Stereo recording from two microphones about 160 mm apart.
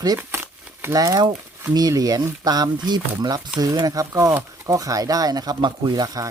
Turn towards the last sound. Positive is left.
turn(degrees=-20)  # may be behind; listen again after turning